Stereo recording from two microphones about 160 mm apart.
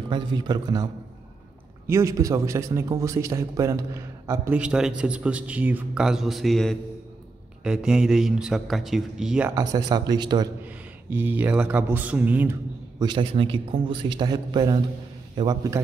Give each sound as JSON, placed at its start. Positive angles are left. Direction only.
{"t": 0.1, "sound": "a man's voice", "side_deg": -30}
{"t": 1.9, "sound": "a man's voice", "side_deg": -20}
{"t": 4.3, "sound": "a man's voice", "side_deg": -10}
{"t": 9.5, "sound": "a man's voice", "side_deg": -20}
{"t": 10.6, "sound": "a man's voice", "side_deg": -10}
{"t": 13.0, "sound": "a man's voice", "side_deg": -30}